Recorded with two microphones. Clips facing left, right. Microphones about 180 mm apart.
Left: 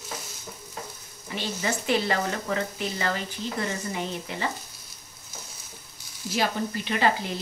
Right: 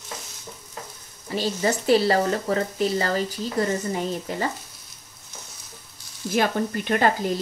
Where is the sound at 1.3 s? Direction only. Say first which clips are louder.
Right 6 dB; 40° right (ahead or behind).